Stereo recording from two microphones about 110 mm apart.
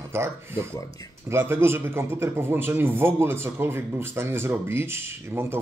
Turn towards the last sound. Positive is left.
turn(degrees=-20)  # may be behind; listen again after turning